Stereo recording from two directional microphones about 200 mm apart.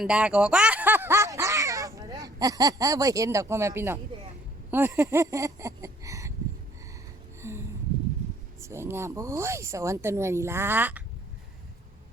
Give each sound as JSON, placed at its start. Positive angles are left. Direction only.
{"t": 0.0, "sound": "speech", "side_deg": -5}
{"t": 4.7, "sound": "a sound", "side_deg": -10}
{"t": 8.6, "sound": "speech", "side_deg": -15}